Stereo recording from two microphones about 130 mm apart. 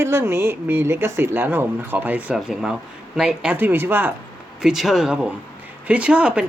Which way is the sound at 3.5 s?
15° right (ahead or behind).